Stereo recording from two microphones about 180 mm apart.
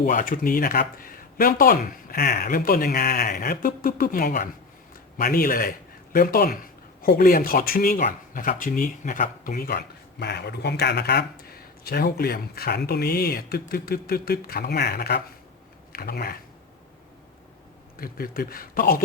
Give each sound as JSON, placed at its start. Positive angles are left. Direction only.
{"t": 0.0, "sound": "speech", "side_deg": 50}
{"t": 18.0, "sound": "speech", "side_deg": 55}